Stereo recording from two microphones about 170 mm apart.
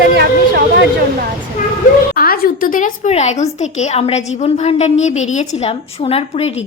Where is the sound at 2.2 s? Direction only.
60° left (ahead or behind); by 6.5 s 35° left (ahead or behind).